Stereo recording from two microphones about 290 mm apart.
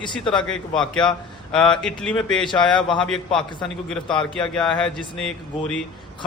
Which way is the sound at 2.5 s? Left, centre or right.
Centre.